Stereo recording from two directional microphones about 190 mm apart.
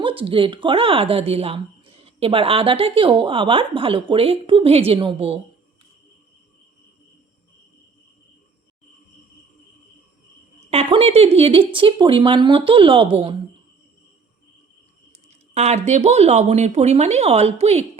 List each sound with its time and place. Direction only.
0.0 s speech: 30° right (ahead or behind)
10.7 s speech: 30° right (ahead or behind)
15.3 s speech: 35° right (ahead or behind)